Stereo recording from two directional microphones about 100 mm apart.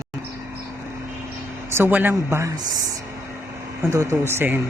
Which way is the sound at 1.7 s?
20° right (ahead or behind).